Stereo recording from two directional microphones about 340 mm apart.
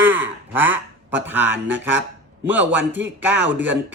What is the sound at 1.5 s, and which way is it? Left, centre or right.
Speech, right.